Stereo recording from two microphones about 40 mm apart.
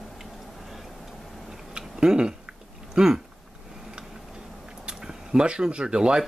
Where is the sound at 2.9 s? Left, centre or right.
Centre.